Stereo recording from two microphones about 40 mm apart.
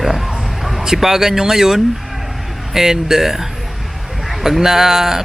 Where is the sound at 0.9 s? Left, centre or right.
Centre.